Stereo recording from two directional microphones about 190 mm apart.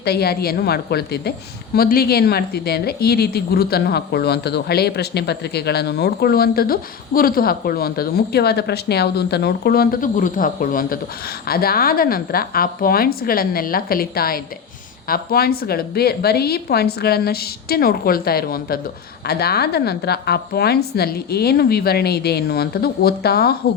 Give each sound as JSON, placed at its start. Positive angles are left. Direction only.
{"t": 0.0, "sound": "a woman's voice", "side_deg": 55}